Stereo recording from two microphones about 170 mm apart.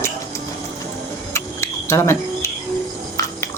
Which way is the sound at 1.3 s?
15° left (ahead or behind).